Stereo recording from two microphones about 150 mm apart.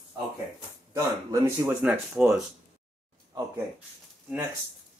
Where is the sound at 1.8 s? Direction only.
5° right (ahead or behind).